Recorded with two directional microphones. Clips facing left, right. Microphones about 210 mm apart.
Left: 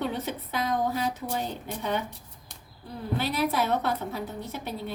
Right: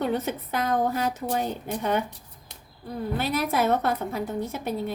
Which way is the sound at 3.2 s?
50° right (ahead or behind).